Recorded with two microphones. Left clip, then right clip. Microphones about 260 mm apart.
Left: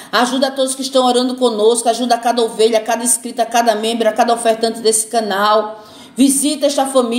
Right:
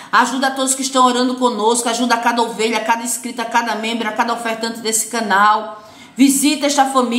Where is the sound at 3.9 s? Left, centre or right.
Centre.